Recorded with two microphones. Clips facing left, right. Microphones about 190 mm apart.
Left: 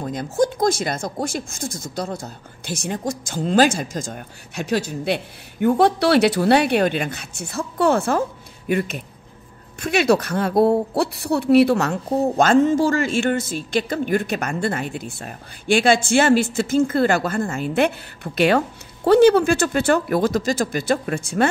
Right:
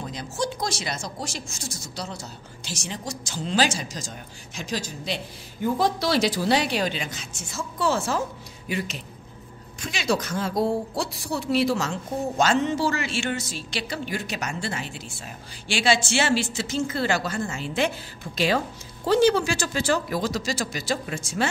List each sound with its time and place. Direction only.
0.0 s speech: 50° left (ahead or behind)